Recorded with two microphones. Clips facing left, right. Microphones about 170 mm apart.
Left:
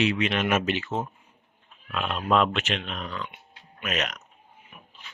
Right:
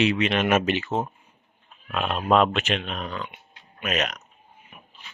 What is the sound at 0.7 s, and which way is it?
Speech, 25° right (ahead or behind).